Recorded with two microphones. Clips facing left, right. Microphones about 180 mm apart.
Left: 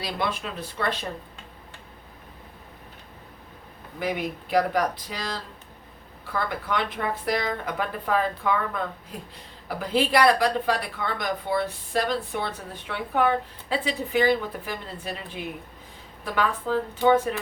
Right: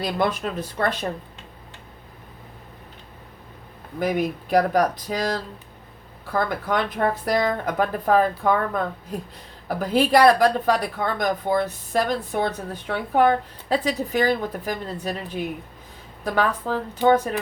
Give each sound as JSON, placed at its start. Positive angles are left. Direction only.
{"t": 0.0, "sound": "speech", "side_deg": -50}
{"t": 4.0, "sound": "speech", "side_deg": -45}